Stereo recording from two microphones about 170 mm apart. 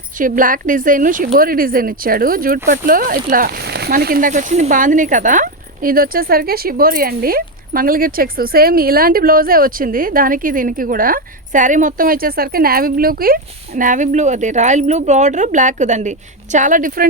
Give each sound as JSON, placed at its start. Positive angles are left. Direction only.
{"t": 0.2, "sound": "speech", "side_deg": -50}